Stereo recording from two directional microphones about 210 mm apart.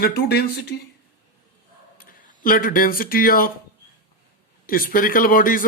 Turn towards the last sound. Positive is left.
turn(degrees=40)  # may be behind; listen again after turning